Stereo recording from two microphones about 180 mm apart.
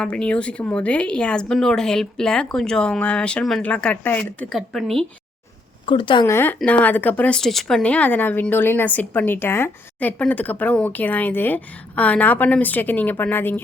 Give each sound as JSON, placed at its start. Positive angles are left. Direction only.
{"t": 0.0, "sound": "speech", "side_deg": 5}
{"t": 5.8, "sound": "speech", "side_deg": 30}
{"t": 6.2, "sound": "speech", "side_deg": 15}